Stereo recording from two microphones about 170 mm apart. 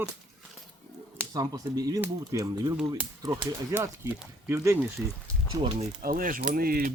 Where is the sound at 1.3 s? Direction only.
20° right (ahead or behind).